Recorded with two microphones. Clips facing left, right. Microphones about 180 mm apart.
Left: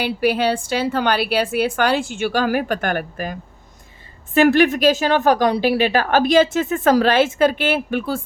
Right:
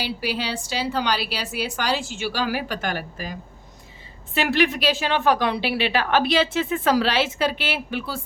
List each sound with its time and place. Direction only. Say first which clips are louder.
0.0 s a woman's voice: left 9 dB; 55° left (ahead or behind)
4.4 s a woman's voice: left 7 dB; 45° left (ahead or behind)